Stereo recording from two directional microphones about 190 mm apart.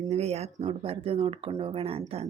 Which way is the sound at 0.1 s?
35° right (ahead or behind).